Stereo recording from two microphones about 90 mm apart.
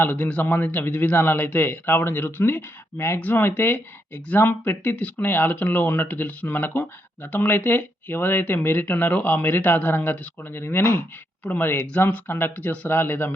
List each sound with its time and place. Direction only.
0.0 s a man's voice: 20° left (ahead or behind)